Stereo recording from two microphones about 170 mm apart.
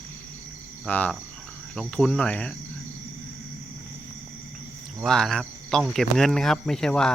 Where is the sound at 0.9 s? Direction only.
10° left (ahead or behind).